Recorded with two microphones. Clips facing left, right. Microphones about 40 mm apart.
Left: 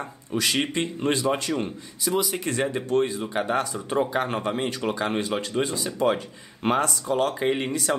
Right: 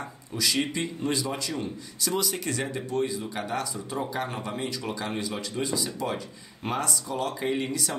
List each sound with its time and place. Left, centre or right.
0.3 s speech: left
2.0 s speech: centre
2.4 s speech: left
2.9 s speech: left